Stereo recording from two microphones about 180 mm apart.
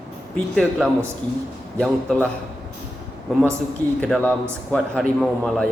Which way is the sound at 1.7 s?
5° left (ahead or behind).